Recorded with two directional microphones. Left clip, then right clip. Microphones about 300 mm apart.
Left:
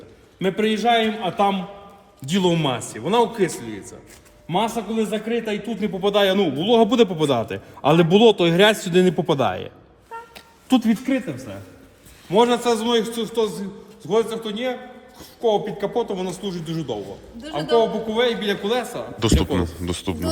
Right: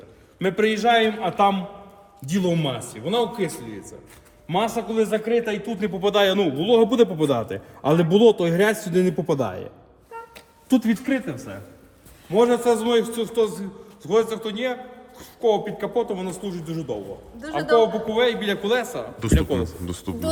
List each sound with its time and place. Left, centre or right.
0.3 s a man's voice: centre
2.2 s a man's voice: centre
4.4 s a man's voice: centre
12.3 s a man's voice: centre